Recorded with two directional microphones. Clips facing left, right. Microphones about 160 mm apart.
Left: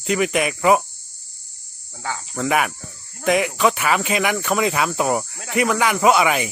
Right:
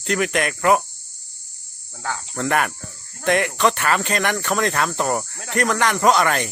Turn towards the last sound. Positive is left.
turn(degrees=5)  # may be behind; listen again after turning